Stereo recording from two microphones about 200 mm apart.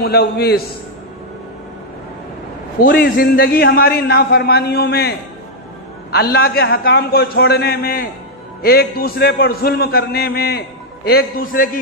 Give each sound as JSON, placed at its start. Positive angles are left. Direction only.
{"t": 0.0, "sound": "a man's voice", "side_deg": 55}
{"t": 2.8, "sound": "a man's voice", "side_deg": 50}
{"t": 6.1, "sound": "a man's voice", "side_deg": 50}